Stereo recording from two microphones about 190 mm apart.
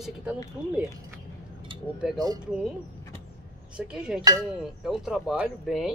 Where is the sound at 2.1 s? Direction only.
20° right (ahead or behind).